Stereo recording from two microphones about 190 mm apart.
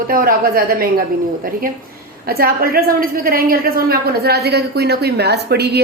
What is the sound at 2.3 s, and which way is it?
A woman's voice, 55° right (ahead or behind).